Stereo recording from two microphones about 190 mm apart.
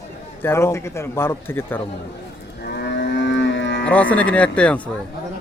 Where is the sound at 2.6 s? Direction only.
60° left (ahead or behind).